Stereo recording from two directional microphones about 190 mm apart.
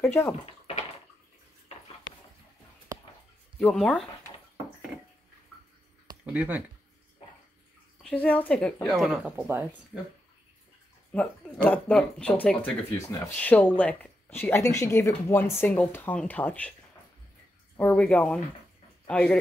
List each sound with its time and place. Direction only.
0.0 s speech: 10° left (ahead or behind)
0.3 s bathtub: 30° left (ahead or behind)
3.5 s speech: 5° left (ahead or behind)
6.2 s speech: 5° right (ahead or behind)
8.0 s speech: 5° left (ahead or behind)
11.1 s speech: 5° left (ahead or behind)
17.7 s speech: 10° left (ahead or behind)